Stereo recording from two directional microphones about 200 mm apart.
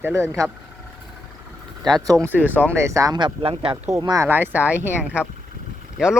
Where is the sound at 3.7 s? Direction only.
15° right (ahead or behind).